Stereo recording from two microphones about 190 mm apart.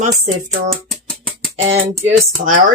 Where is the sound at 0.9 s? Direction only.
Centre (ahead or behind).